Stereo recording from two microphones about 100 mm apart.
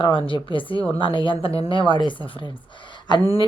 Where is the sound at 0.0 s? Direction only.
60° left (ahead or behind).